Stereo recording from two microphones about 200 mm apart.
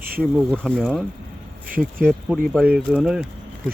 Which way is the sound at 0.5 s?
Centre (ahead or behind).